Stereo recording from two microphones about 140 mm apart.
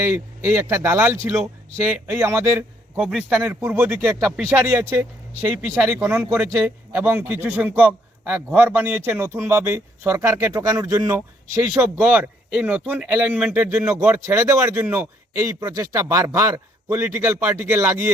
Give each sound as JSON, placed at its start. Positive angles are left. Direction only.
{"t": 0.0, "sound": "a man's voice", "side_deg": -20}
{"t": 3.0, "sound": "speech", "side_deg": -5}
{"t": 3.4, "sound": "a man's voice", "side_deg": -15}